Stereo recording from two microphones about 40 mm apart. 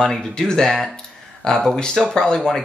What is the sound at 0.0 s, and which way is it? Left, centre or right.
Speech, centre.